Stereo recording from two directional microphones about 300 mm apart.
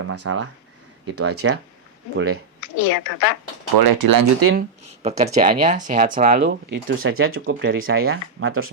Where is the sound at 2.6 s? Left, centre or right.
Left.